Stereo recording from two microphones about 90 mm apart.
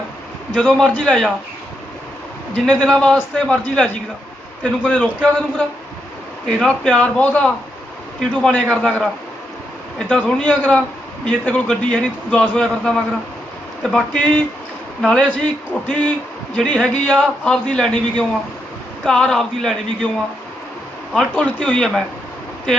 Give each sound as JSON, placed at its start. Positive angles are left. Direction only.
{"t": 0.6, "sound": "a man's voice", "side_deg": 10}
{"t": 2.6, "sound": "a man's voice", "side_deg": 5}
{"t": 6.6, "sound": "a man's voice", "side_deg": 10}
{"t": 10.1, "sound": "a man's voice", "side_deg": 5}
{"t": 10.4, "sound": "a man's voice", "side_deg": 15}
{"t": 21.1, "sound": "a man's voice", "side_deg": 5}